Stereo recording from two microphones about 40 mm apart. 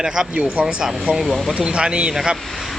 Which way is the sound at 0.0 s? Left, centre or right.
Centre.